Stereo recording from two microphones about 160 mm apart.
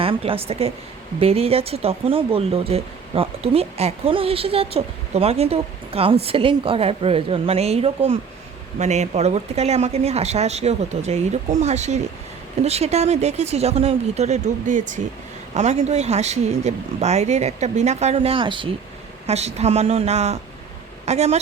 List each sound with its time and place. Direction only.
0.0 s speech: 35° right (ahead or behind)
19.3 s speech: 40° right (ahead or behind)